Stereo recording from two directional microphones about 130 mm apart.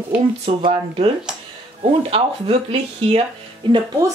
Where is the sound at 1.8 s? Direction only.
50° right (ahead or behind).